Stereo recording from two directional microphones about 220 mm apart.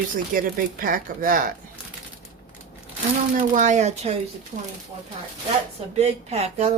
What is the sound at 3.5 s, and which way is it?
Speech, 35° right (ahead or behind).